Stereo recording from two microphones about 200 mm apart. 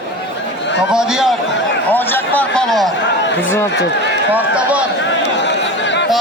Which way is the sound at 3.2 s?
70° left (ahead or behind).